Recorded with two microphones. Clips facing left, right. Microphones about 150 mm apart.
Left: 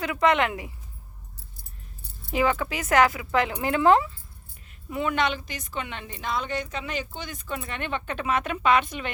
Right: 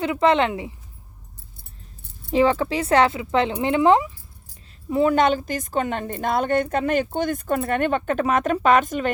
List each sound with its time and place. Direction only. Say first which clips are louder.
0.0 s speech: right 4 dB; 25° right (ahead or behind)
2.3 s speech: right 6 dB; 30° right (ahead or behind)
4.9 s a woman's voice: right 8 dB; 35° right (ahead or behind)